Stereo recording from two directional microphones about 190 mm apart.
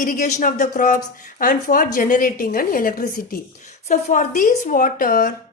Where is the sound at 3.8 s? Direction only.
40° left (ahead or behind).